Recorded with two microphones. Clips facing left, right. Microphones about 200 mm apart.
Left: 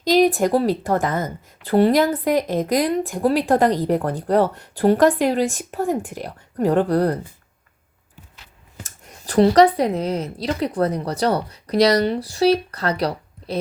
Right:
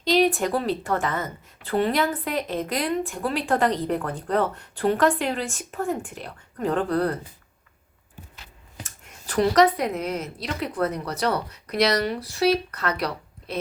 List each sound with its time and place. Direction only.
0.0 s a woman's voice: 40° left (ahead or behind)
9.0 s a woman's voice: 35° left (ahead or behind)